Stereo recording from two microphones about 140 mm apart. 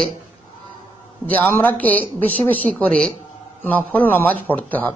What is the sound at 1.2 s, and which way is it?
Speech, 15° left (ahead or behind).